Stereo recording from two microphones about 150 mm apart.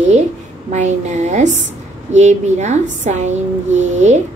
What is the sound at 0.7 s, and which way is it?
A woman's voice, 50° right (ahead or behind).